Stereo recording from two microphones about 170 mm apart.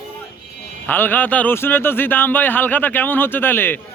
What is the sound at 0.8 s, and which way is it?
Speech, 10° left (ahead or behind).